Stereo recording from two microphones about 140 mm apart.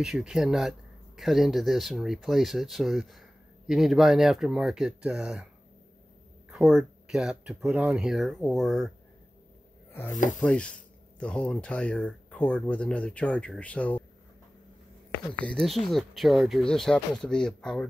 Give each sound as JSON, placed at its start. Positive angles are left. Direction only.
{"t": 0.0, "sound": "speech", "side_deg": -5}
{"t": 6.5, "sound": "speech", "side_deg": -5}
{"t": 10.4, "sound": "speech", "side_deg": 10}
{"t": 15.3, "sound": "speech", "side_deg": 10}